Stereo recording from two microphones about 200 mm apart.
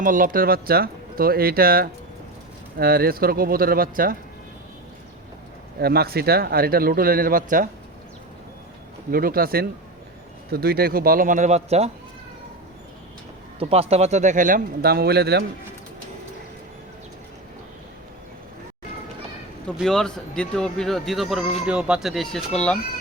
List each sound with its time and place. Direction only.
0.0 s speech: 45° right (ahead or behind)
5.8 s speech: 50° right (ahead or behind)
9.0 s speech: 45° right (ahead or behind)
13.6 s speech: 30° right (ahead or behind); by 15.4 s 55° right (ahead or behind)
19.6 s speech: centre (ahead or behind)